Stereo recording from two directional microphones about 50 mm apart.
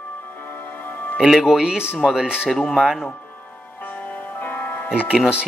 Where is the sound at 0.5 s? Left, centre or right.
Left.